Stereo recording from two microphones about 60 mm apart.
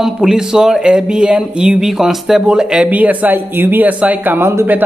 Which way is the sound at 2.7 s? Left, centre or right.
Right.